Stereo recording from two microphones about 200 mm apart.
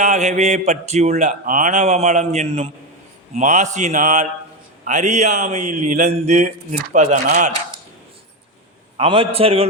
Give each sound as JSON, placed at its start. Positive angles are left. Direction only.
{"t": 0.0, "sound": "mantra", "side_deg": -35}
{"t": 9.0, "sound": "a man's voice", "side_deg": -25}